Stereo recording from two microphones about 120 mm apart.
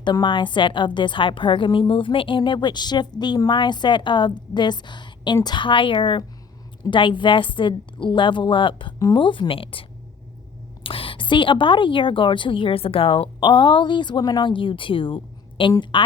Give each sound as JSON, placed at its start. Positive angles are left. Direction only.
{"t": 0.0, "sound": "a woman's voice", "side_deg": 40}
{"t": 10.8, "sound": "a woman's voice", "side_deg": 50}